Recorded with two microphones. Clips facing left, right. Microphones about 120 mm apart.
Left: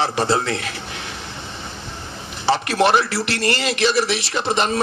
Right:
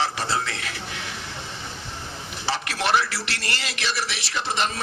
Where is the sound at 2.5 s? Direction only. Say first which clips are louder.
Left 5 dB; 25° left (ahead or behind).